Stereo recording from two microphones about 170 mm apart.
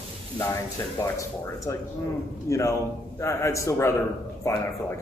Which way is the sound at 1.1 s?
20° left (ahead or behind).